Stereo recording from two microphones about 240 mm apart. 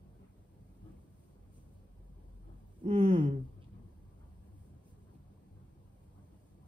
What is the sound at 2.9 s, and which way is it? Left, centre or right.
Speech, right.